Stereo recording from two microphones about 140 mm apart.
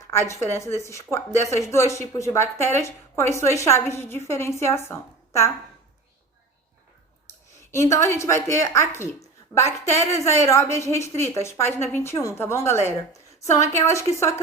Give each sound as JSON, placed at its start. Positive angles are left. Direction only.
{"t": 0.1, "sound": "a woman's voice", "side_deg": 20}
{"t": 7.7, "sound": "a woman's voice", "side_deg": 20}
{"t": 10.1, "sound": "a woman's voice", "side_deg": 20}